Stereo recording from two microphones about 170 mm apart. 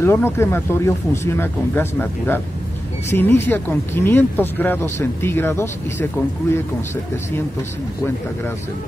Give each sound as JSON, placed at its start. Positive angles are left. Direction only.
{"t": 0.0, "sound": "speech", "side_deg": 15}